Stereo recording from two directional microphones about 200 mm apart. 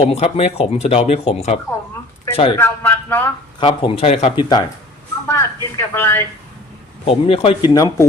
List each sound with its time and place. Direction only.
0.0 s speech: 30° left (ahead or behind)
2.6 s a man's voice: 10° left (ahead or behind)
3.6 s speech: 25° left (ahead or behind)
5.3 s a woman's voice: 15° left (ahead or behind)
7.0 s speech: 30° left (ahead or behind)